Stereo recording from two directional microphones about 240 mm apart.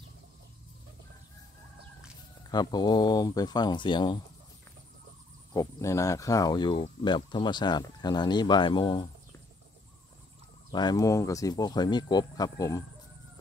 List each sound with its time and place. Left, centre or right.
2.5 s speech: centre
5.5 s speech: centre
10.7 s speech: centre